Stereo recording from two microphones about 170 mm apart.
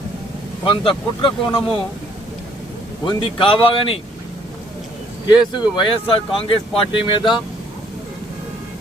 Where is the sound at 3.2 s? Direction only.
30° left (ahead or behind).